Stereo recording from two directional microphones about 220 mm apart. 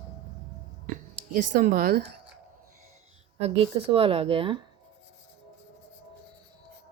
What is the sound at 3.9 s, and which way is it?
Speech, 25° right (ahead or behind).